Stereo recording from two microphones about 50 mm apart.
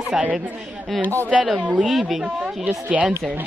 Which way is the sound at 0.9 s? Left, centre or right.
Left.